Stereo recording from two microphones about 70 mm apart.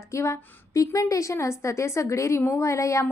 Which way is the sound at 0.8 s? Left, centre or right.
Left.